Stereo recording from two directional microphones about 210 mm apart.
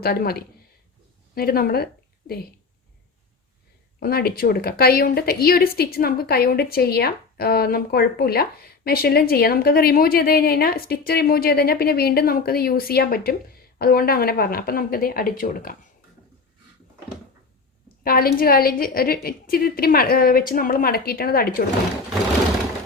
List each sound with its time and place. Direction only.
0.0 s a woman's voice: 45° left (ahead or behind)
4.0 s a woman's voice: 45° left (ahead or behind)
18.0 s a woman's voice: 45° left (ahead or behind)